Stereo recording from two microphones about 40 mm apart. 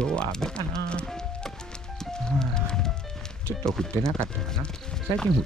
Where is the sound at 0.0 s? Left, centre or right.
Left.